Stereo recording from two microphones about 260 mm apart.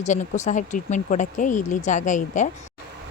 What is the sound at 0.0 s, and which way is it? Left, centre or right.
Speech, left.